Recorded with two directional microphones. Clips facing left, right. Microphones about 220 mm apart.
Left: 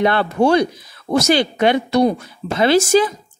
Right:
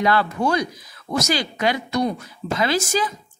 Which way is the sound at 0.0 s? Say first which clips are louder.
Left 5 dB; 25° left (ahead or behind).